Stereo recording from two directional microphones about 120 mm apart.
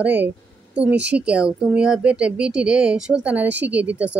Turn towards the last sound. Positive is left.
turn(degrees=-10)  # may be behind; listen again after turning